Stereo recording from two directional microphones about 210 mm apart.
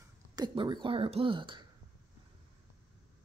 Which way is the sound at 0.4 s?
20° right (ahead or behind).